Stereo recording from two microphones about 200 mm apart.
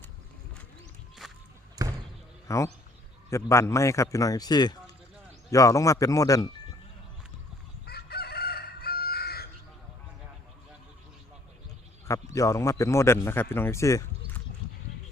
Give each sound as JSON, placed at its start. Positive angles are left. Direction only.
{"t": 1.2, "sound": "a sound", "side_deg": 0}
{"t": 1.8, "sound": "basketball bounce", "side_deg": -20}
{"t": 2.5, "sound": "a man's voice", "side_deg": 15}
{"t": 7.9, "sound": "chicken", "side_deg": 50}
{"t": 12.0, "sound": "speech", "side_deg": 15}